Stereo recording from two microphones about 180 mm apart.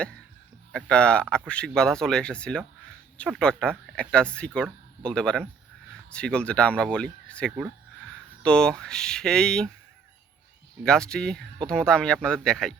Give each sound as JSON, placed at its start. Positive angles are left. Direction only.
{"t": 0.7, "sound": "speech", "side_deg": 5}
{"t": 10.8, "sound": "speech", "side_deg": 5}